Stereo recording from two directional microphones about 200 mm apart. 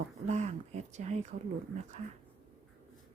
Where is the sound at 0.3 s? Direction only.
35° right (ahead or behind).